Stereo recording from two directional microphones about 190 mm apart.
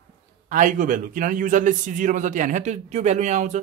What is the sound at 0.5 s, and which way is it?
A man's voice, 45° right (ahead or behind).